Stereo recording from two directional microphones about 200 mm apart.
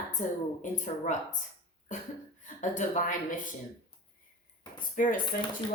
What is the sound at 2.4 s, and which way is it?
Speech, 40° left (ahead or behind).